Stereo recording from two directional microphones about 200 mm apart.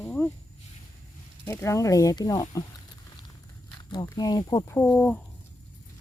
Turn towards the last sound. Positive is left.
turn(degrees=10)  # may be behind; listen again after turning